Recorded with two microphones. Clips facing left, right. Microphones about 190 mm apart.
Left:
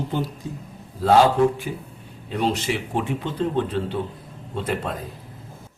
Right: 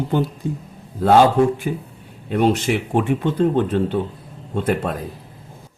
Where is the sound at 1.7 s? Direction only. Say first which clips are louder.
Right 6 dB; 65° right (ahead or behind).